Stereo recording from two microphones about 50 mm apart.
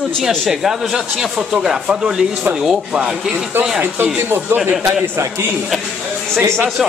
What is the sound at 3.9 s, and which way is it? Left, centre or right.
Speech, right.